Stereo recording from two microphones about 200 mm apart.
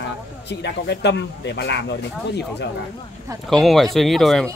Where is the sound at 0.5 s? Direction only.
60° left (ahead or behind).